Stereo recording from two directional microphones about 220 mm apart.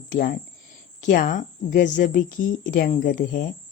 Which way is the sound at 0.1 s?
35° left (ahead or behind).